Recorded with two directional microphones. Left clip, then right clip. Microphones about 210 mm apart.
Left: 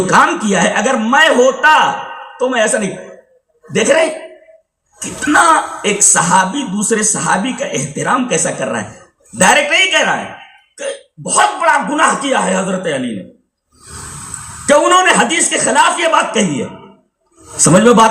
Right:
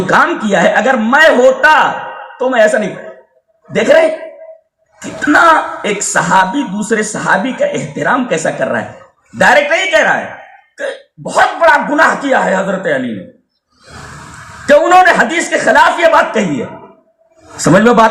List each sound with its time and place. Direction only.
0.0 s speech: 20° right (ahead or behind)
14.7 s speech: 20° right (ahead or behind)